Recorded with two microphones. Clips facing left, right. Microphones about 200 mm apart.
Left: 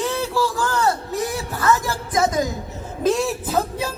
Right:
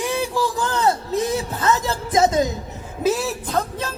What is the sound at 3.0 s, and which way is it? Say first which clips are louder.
Speech: left 1 dB; 5° right (ahead or behind).